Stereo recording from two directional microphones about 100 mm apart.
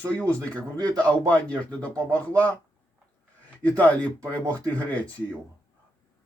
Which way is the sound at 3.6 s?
15° left (ahead or behind).